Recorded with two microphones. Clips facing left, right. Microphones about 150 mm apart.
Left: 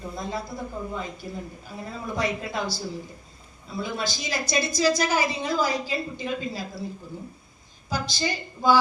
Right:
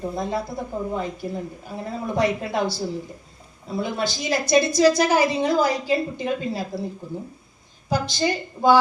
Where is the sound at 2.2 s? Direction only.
65° right (ahead or behind).